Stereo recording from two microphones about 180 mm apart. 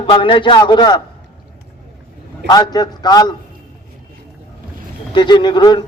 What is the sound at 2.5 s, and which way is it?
Speech, 20° left (ahead or behind).